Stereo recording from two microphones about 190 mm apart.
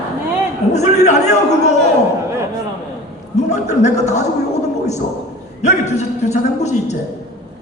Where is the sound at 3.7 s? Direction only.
35° left (ahead or behind).